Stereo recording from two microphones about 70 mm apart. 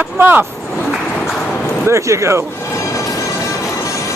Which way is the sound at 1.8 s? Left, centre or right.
Right.